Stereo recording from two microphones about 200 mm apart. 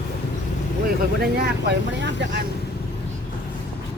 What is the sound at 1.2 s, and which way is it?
Speech, 55° right (ahead or behind).